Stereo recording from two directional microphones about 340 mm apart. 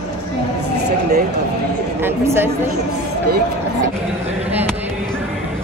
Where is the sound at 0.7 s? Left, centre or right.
Right.